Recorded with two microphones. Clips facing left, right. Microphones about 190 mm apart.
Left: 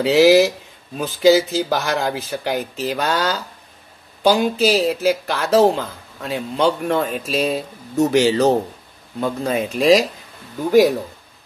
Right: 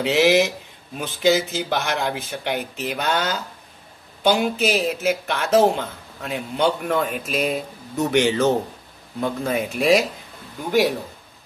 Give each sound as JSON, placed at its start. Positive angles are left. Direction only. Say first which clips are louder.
{"t": 0.0, "sound": "speech", "louder": "left 5 dB", "side_deg": 35}